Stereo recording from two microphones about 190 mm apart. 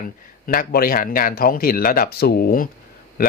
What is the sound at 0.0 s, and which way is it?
Speech, 45° left (ahead or behind).